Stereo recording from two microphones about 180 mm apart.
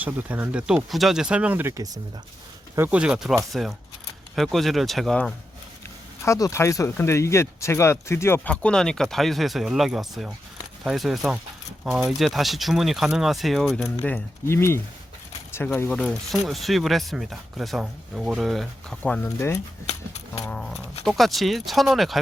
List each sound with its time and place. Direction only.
0.0 s speech: 10° right (ahead or behind)
6.2 s speech: 15° left (ahead or behind); by 13.9 s centre (ahead or behind)
14.0 s speech: 10° left (ahead or behind)
20.5 s speech: 5° left (ahead or behind)